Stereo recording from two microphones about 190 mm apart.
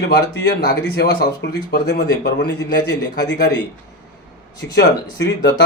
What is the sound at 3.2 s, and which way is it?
Speech, 65° left (ahead or behind).